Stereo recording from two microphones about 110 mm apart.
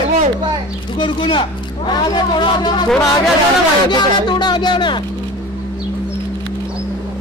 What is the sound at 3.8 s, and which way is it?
Speech, 45° left (ahead or behind).